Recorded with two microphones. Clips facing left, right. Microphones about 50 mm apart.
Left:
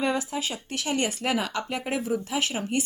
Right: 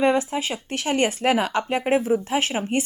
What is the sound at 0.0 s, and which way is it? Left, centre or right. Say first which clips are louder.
A woman's voice: right 6 dB; right.